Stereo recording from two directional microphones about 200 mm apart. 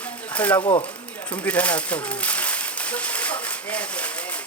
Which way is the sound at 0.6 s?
25° left (ahead or behind).